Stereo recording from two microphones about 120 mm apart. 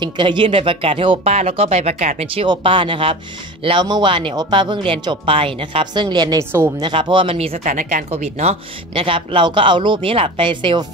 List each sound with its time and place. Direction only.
0.0 s speech: 40° right (ahead or behind)
1.2 s speech: 60° right (ahead or behind)
2.3 s speech: 45° right (ahead or behind)